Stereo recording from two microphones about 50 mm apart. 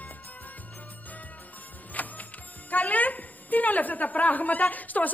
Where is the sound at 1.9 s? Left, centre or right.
Left.